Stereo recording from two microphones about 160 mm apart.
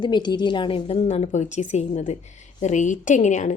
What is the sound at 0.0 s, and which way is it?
A woman's voice, 30° left (ahead or behind).